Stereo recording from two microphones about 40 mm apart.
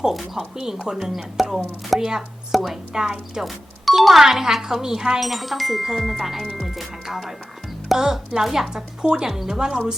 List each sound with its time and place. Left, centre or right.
0.1 s speech: centre
0.5 s speech: centre
2.9 s speech: centre
3.4 s speech: centre
5.2 s speech: centre